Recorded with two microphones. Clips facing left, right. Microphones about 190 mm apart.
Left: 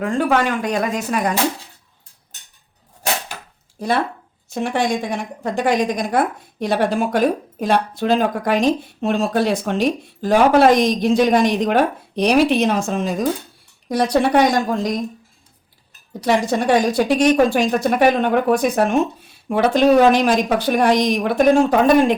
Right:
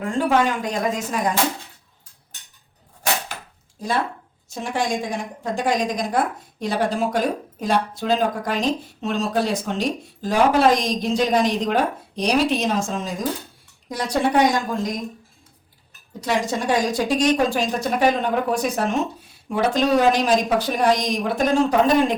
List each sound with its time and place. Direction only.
0.0 s speech: 70° left (ahead or behind)
4.4 s speech: 65° left (ahead or behind)
16.2 s speech: 65° left (ahead or behind)